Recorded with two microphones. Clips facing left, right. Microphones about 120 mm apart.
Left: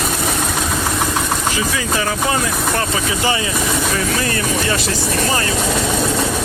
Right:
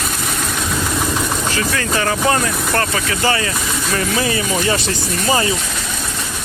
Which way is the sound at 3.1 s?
15° left (ahead or behind).